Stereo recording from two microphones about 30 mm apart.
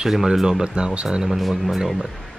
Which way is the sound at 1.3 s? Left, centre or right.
Centre.